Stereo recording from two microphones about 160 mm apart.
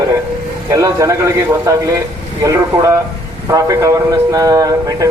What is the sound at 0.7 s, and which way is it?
A man's voice, 20° right (ahead or behind).